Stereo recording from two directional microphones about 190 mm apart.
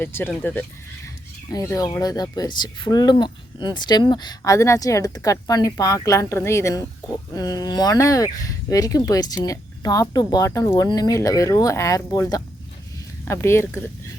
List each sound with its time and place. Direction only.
0.0 s speech: 10° left (ahead or behind)